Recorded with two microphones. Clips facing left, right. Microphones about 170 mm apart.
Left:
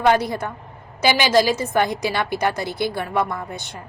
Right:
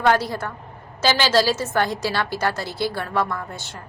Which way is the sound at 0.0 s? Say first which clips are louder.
Left 2 dB; 20° left (ahead or behind).